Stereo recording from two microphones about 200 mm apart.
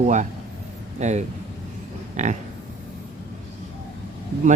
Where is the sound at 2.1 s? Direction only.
35° right (ahead or behind).